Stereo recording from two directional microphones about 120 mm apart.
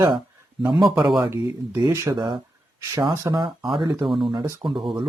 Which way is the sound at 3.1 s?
25° right (ahead or behind).